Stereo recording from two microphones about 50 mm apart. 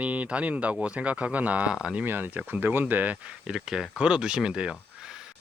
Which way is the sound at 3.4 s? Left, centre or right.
Centre.